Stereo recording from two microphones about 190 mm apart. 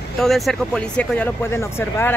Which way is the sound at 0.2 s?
Centre (ahead or behind).